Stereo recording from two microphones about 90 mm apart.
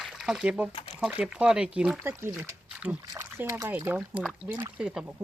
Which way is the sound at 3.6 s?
25° right (ahead or behind).